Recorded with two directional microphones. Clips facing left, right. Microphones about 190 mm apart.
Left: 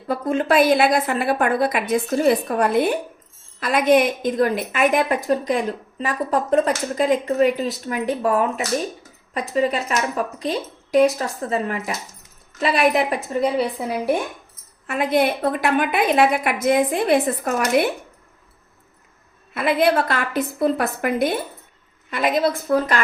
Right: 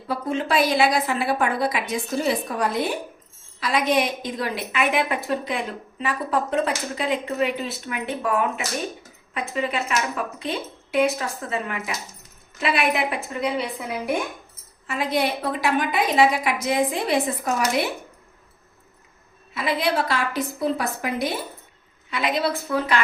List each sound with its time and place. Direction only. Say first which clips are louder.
0.1 s a woman's voice: left 4 dB; 50° left (ahead or behind)
14.8 s a woman's voice: left 4 dB; 55° left (ahead or behind)
19.5 s a woman's voice: left 5 dB; 55° left (ahead or behind)